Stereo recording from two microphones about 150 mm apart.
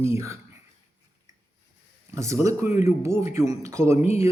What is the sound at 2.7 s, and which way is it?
Speech, 50° left (ahead or behind).